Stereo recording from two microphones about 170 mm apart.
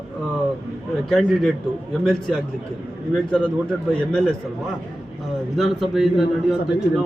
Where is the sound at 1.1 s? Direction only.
5° left (ahead or behind).